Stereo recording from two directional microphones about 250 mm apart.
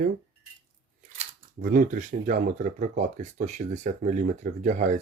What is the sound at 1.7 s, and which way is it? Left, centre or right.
Speech, right.